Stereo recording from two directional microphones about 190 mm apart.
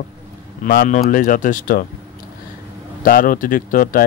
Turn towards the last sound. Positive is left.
turn(degrees=45)  # may be behind; listen again after turning